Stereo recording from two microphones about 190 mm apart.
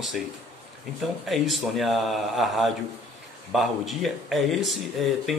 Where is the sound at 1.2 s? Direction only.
Centre (ahead or behind).